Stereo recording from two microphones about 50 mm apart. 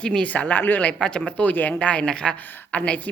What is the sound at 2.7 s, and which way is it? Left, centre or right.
Speech, left.